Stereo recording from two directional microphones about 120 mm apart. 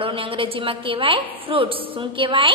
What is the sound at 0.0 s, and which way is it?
A woman's voice, 50° right (ahead or behind).